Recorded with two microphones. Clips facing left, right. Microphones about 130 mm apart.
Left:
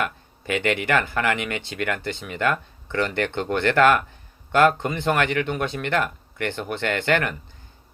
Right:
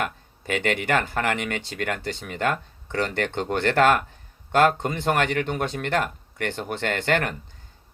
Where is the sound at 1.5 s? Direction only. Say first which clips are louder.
Left 1 dB; 55° left (ahead or behind).